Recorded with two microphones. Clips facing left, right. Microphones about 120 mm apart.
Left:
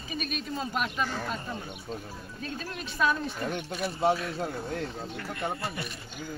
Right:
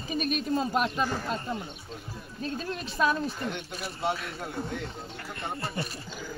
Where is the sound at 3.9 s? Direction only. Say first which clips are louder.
Left 5 dB; 25° left (ahead or behind).